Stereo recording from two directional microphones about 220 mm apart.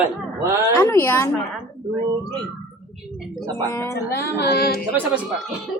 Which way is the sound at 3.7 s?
10° left (ahead or behind).